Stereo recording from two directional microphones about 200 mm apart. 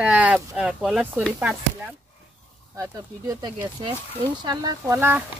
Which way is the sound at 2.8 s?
15° right (ahead or behind).